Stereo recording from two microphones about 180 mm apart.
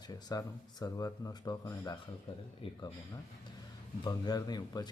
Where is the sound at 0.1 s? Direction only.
20° left (ahead or behind).